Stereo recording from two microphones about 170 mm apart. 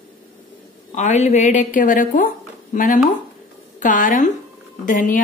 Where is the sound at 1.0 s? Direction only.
40° left (ahead or behind).